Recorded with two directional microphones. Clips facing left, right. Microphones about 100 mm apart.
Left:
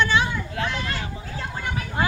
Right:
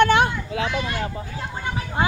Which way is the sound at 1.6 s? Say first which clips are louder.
Right 2 dB; 25° right (ahead or behind).